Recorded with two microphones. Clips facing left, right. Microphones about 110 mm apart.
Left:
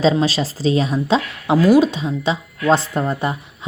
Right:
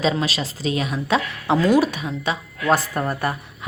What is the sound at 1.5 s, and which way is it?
Speech, 10° left (ahead or behind).